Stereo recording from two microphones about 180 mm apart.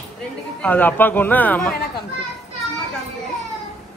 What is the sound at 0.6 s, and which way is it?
Speech, 10° left (ahead or behind).